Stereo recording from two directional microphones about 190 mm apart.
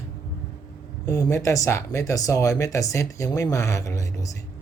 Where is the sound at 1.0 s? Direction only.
15° left (ahead or behind).